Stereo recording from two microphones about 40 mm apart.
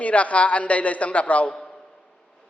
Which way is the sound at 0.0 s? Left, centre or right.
Left.